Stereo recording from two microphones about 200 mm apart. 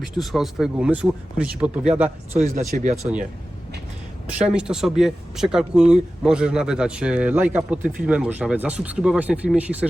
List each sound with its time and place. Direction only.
0.0 s speech: centre (ahead or behind)
2.3 s speech: 35° right (ahead or behind)
4.3 s speech: 5° right (ahead or behind)